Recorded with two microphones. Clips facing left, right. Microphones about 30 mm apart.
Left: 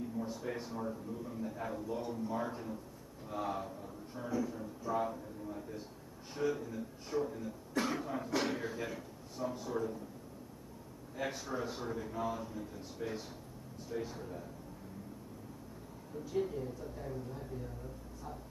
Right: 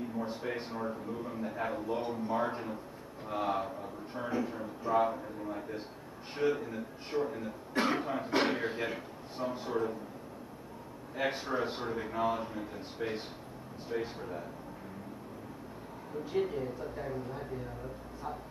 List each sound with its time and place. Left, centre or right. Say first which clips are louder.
0.0 s speech: right 3 dB; right
11.1 s speech: right 6 dB; right
16.3 s speech: right 3 dB; right